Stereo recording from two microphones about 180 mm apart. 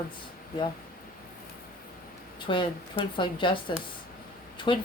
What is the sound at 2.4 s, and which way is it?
A woman's voice, 25° left (ahead or behind).